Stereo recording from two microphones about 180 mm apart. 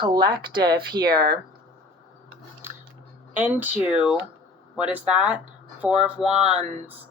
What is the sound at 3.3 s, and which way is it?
Speech, 10° right (ahead or behind).